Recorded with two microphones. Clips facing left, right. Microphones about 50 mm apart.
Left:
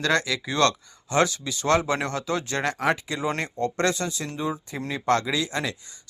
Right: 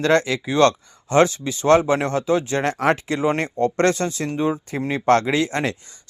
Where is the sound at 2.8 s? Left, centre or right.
Right.